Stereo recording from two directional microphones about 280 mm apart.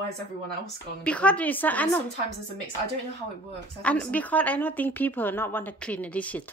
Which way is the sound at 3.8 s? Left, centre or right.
Centre.